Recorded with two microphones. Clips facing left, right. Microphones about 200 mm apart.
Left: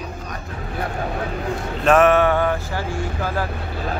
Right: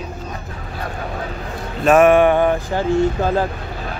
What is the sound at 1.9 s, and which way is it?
Speech, 10° right (ahead or behind).